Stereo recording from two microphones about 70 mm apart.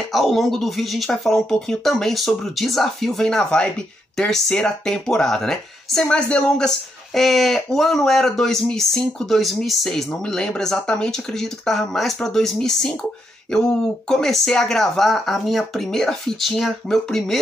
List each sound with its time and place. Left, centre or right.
0.1 s speech: centre
7.2 s speech: centre